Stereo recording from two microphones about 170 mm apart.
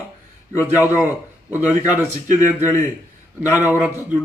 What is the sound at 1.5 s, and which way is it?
Speech, 10° right (ahead or behind).